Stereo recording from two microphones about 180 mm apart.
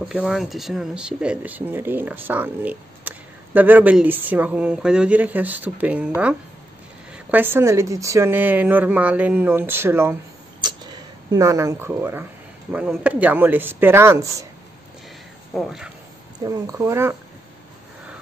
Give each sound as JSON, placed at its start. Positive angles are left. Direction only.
{"t": 0.1, "sound": "speech", "side_deg": -5}
{"t": 11.3, "sound": "speech", "side_deg": -15}
{"t": 15.5, "sound": "speech", "side_deg": 0}
{"t": 16.3, "sound": "speech", "side_deg": -20}